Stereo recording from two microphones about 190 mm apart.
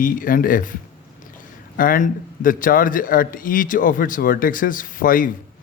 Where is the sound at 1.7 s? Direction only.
45° left (ahead or behind).